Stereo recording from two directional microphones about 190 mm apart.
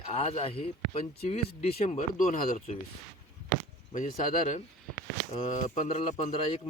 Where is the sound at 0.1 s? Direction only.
35° left (ahead or behind).